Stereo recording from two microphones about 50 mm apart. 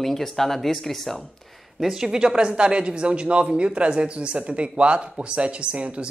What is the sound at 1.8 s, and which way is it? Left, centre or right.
Speech, centre.